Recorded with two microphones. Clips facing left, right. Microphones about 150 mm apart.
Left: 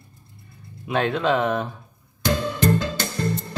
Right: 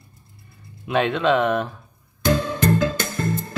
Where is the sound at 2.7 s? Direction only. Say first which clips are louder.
Right 3 dB; 50° right (ahead or behind).